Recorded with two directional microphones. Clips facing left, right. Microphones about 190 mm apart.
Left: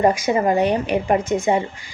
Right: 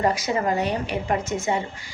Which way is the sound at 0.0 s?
15° left (ahead or behind).